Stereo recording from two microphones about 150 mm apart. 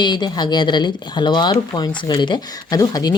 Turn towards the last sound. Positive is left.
turn(degrees=25)  # may be behind; listen again after turning